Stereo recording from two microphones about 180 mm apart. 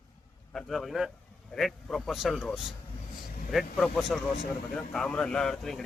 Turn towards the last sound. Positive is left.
turn(degrees=0)  # may be behind; listen again after turning